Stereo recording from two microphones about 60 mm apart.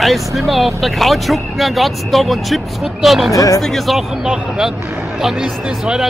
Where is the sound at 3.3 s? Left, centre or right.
Left.